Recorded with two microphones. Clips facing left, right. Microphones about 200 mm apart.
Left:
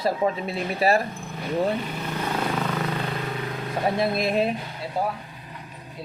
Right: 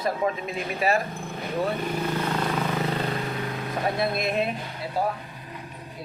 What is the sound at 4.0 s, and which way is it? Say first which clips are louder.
Speech: left 3 dB; 30° left (ahead or behind).